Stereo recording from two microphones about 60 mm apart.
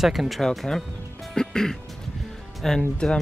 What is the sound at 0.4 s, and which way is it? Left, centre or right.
Speech, centre.